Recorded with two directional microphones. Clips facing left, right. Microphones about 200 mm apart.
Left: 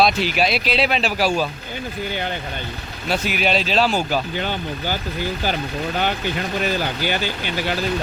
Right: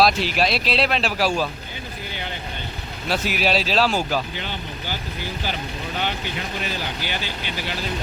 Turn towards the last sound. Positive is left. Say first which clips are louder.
# left 6 dB
turn(degrees=50)  # may be behind; listen again after turning